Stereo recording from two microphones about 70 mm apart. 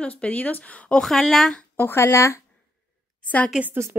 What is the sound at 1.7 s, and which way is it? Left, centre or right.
Speech, left.